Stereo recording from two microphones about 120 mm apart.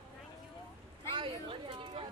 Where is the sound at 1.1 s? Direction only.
45° right (ahead or behind).